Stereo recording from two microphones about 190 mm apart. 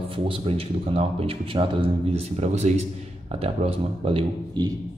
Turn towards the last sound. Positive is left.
turn(degrees=-25)  # may be behind; listen again after turning